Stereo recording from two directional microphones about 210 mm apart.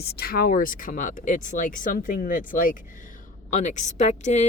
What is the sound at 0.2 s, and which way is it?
A woman's voice, 45° left (ahead or behind).